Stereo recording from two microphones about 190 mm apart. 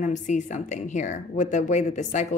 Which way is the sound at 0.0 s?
40° left (ahead or behind).